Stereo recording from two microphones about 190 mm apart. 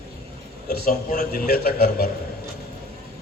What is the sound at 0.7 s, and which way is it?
A man's voice, 50° left (ahead or behind).